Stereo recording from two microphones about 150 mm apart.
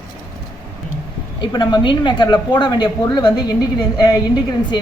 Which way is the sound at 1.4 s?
30° left (ahead or behind).